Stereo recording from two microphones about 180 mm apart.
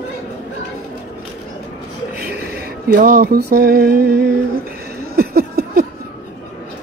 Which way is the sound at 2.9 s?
50° right (ahead or behind).